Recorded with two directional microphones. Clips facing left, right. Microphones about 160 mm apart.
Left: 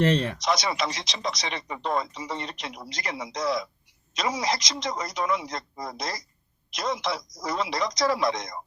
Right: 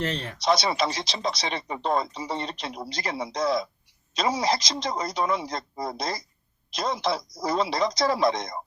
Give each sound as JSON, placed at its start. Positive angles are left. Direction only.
{"t": 0.0, "sound": "speech", "side_deg": 65}
{"t": 0.4, "sound": "speech", "side_deg": -30}